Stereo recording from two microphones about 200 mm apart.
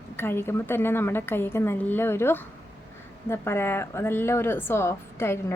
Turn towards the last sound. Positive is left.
turn(degrees=15)  # may be behind; listen again after turning